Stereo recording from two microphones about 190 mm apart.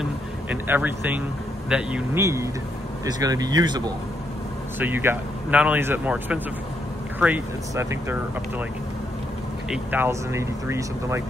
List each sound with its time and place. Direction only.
0.0 s a sound: 10° right (ahead or behind)
1.7 s speech: 5° right (ahead or behind); by 3.9 s 20° right (ahead or behind)
4.7 s speech: 10° right (ahead or behind)
9.7 s speech: 10° right (ahead or behind)